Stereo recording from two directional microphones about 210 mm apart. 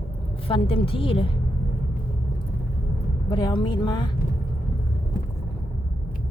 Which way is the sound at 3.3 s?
20° left (ahead or behind).